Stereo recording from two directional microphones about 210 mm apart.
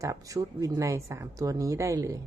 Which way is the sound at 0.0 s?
15° right (ahead or behind).